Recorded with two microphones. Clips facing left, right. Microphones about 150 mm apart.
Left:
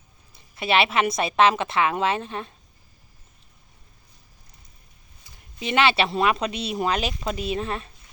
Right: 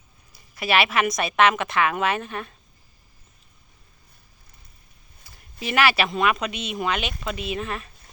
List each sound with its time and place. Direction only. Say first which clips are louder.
0.3 s a woman's voice: even; 25° left (ahead or behind)
5.5 s speech: left 1 dB; 25° left (ahead or behind)